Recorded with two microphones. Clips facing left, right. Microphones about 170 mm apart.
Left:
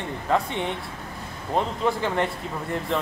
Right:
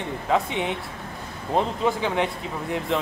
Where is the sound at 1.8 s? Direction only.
Centre (ahead or behind).